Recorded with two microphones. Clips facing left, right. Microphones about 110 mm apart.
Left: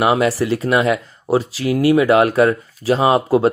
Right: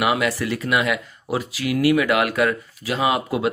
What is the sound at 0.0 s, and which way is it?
Speech, 30° left (ahead or behind).